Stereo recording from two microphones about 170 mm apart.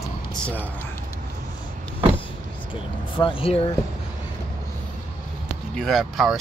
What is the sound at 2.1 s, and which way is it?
Speech, 30° left (ahead or behind).